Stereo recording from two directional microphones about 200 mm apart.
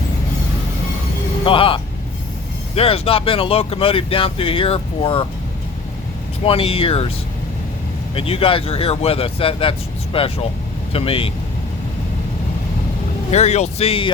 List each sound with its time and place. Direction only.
1.5 s speech: 25° left (ahead or behind)
6.4 s speech: 25° left (ahead or behind)
8.1 s speech: 30° left (ahead or behind)
13.3 s speech: 35° left (ahead or behind)